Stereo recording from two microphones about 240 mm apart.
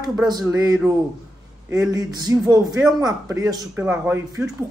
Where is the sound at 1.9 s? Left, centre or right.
Centre.